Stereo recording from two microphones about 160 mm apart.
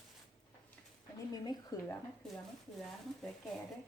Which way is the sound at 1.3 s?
25° left (ahead or behind).